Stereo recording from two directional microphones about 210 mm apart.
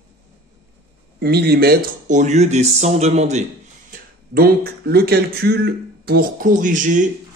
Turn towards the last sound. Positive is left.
turn(degrees=-35)  # may be behind; listen again after turning